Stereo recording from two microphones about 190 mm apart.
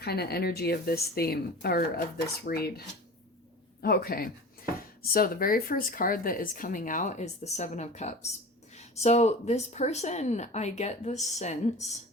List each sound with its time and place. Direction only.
0.0 s speech: 55° left (ahead or behind); by 11.9 s 35° left (ahead or behind)